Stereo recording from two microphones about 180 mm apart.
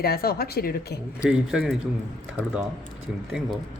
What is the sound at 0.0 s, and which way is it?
Speech, 55° left (ahead or behind).